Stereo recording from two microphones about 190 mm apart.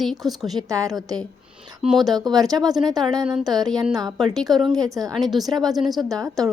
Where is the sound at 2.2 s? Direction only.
20° right (ahead or behind).